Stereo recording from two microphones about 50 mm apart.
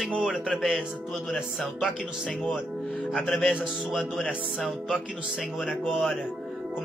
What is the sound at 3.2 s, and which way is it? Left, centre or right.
Music, centre.